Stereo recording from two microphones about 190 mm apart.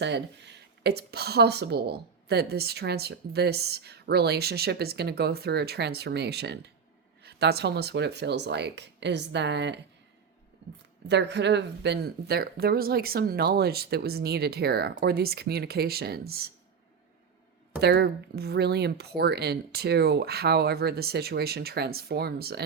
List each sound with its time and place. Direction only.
0.0 s speech: 65° right (ahead or behind)
11.1 s speech: 65° right (ahead or behind)
17.7 s speech: 60° right (ahead or behind)